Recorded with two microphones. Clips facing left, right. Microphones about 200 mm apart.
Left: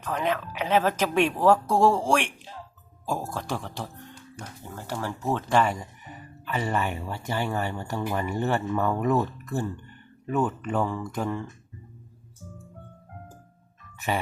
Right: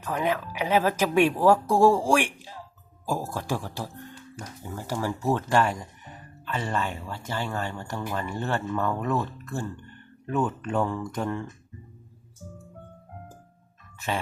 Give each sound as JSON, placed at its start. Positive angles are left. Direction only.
{"t": 0.1, "sound": "speech", "side_deg": -10}
{"t": 5.5, "sound": "speech", "side_deg": 5}
{"t": 10.2, "sound": "speech", "side_deg": 5}